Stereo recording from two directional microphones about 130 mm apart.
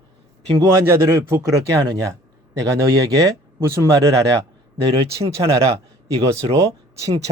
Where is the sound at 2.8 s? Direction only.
25° right (ahead or behind).